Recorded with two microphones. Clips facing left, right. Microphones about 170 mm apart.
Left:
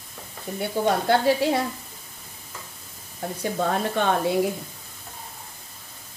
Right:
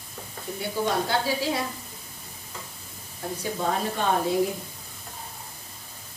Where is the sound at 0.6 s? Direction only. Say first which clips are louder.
Left 3 dB; 60° left (ahead or behind).